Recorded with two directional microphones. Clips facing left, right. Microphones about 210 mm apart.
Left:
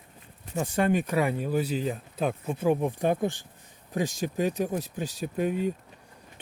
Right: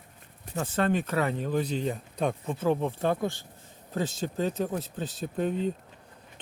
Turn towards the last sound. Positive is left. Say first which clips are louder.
# left 1 dB
turn(degrees=10)  # may be behind; listen again after turning